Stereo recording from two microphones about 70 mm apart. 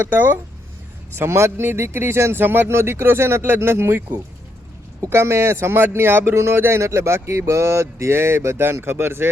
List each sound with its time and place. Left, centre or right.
0.0 s speech: right
1.2 s a man's voice: right